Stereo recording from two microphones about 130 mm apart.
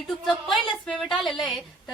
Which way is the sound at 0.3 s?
Centre (ahead or behind).